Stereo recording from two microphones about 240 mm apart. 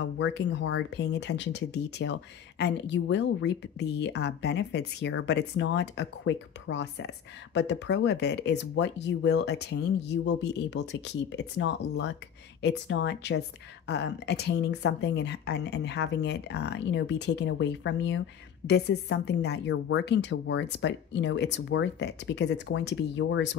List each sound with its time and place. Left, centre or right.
0.2 s a woman's voice: left